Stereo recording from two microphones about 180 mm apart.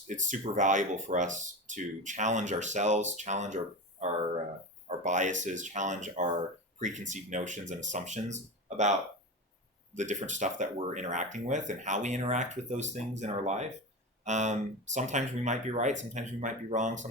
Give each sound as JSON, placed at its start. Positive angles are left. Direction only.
{"t": 0.1, "sound": "speech", "side_deg": -45}
{"t": 4.9, "sound": "speech", "side_deg": -40}
{"t": 9.9, "sound": "speech", "side_deg": -40}